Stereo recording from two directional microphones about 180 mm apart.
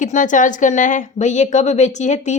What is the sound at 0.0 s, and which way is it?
A woman's voice, 45° left (ahead or behind).